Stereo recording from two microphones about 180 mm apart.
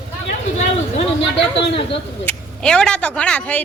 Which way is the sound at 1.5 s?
30° left (ahead or behind).